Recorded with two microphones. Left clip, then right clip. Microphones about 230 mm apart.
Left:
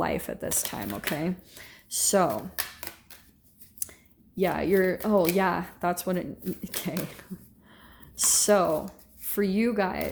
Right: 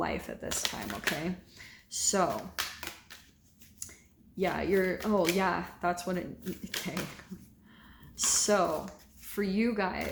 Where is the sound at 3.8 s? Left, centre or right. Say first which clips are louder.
Left 5 dB; left.